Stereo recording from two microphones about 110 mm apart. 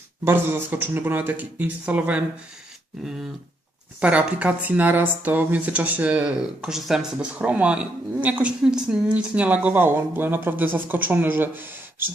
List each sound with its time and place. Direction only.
0.3 s speech: 20° right (ahead or behind)
4.0 s speech: 10° right (ahead or behind)